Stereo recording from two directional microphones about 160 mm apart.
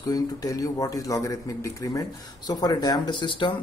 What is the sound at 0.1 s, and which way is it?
Speech, 20° left (ahead or behind).